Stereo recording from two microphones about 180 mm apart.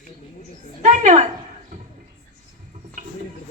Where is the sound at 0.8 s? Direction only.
45° right (ahead or behind).